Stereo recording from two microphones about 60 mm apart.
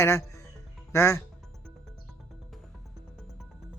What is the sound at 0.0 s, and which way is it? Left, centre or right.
Speech, left.